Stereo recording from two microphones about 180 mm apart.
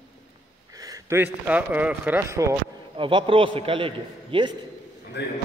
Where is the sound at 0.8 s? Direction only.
20° right (ahead or behind).